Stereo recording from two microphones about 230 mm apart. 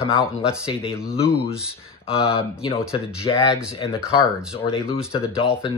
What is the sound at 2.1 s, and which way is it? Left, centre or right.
Speech, left.